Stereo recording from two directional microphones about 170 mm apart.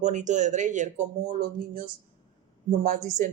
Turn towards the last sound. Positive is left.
turn(degrees=-45)  # may be behind; listen again after turning